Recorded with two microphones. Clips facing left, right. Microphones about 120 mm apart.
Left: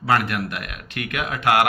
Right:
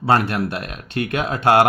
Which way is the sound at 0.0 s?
30° right (ahead or behind).